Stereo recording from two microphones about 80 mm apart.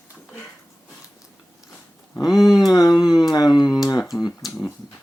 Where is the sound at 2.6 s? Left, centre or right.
Left.